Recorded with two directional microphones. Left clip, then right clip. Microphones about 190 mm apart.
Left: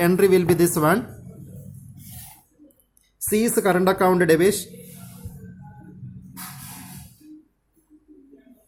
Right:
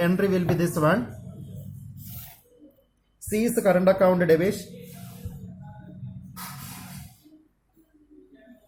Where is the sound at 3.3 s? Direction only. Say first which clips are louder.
Left 2 dB; 50° left (ahead or behind).